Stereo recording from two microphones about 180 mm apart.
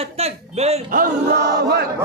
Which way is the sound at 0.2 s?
35° right (ahead or behind).